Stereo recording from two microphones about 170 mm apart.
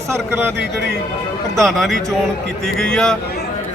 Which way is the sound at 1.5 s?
Centre (ahead or behind).